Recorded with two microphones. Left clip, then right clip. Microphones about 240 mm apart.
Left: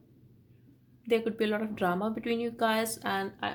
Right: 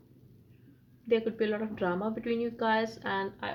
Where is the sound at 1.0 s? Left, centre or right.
Left.